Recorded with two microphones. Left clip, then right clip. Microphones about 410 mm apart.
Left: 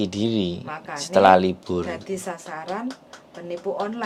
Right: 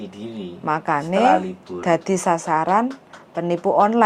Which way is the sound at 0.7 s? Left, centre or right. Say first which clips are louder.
Right 7 dB; right.